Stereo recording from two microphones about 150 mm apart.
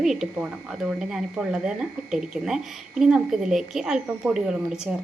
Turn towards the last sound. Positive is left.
turn(degrees=-5)  # may be behind; listen again after turning